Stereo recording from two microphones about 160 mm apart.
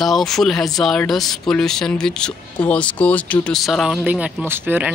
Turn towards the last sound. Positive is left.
turn(degrees=-10)  # may be behind; listen again after turning